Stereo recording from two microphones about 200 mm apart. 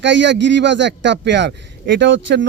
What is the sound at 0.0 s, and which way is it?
A man's voice, 65° right (ahead or behind).